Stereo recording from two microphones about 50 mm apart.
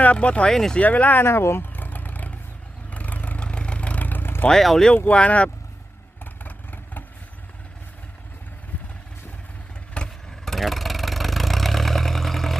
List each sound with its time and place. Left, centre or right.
0.0 s speech: left
0.5 s speech: centre
0.8 s speech: left
1.2 s speech: left
1.7 s vehicle: left
4.6 s speech: centre
5.0 s speech: left
6.4 s vehicle: left
10.0 s vehicle: left
10.4 s vehicle: centre